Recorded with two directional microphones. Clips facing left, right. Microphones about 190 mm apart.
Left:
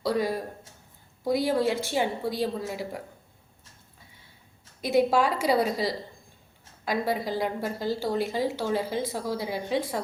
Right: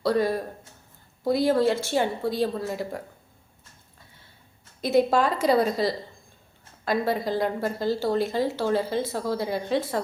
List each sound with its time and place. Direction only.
0.0 s speech: 10° left (ahead or behind)
4.8 s speech: 10° left (ahead or behind)